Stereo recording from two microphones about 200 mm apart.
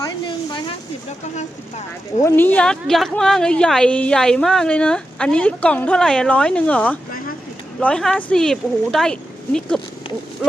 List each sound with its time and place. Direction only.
0.0 s a sound: 20° left (ahead or behind)
1.4 s speech: 35° left (ahead or behind)
2.2 s a woman's voice: 10° left (ahead or behind)